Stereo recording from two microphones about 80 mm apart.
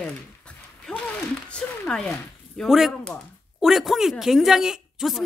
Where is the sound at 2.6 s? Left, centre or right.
Centre.